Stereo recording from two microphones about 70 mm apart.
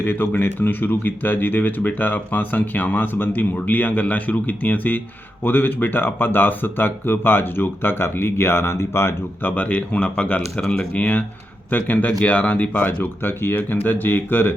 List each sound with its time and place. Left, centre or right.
0.0 s speech: left
9.5 s speech: left